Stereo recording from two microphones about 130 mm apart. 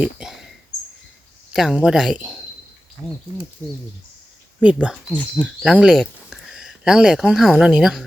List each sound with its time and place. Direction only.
0.0 s a sound: 5° right (ahead or behind)
1.5 s speech: 5° right (ahead or behind)
3.6 s speech: 20° right (ahead or behind)
4.6 s speech: 5° right (ahead or behind)